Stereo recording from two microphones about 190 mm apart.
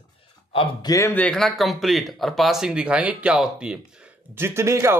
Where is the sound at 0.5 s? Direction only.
30° left (ahead or behind).